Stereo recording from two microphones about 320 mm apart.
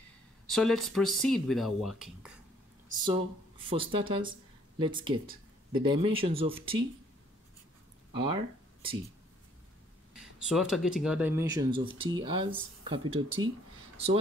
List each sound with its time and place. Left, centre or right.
0.5 s speech: centre
3.1 s speech: centre
8.1 s speech: centre
10.4 s speech: centre